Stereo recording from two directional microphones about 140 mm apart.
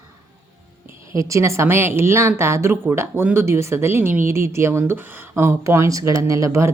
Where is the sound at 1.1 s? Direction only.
20° right (ahead or behind).